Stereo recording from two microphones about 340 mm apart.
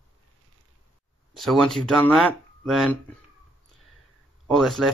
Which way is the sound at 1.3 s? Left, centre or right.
Centre.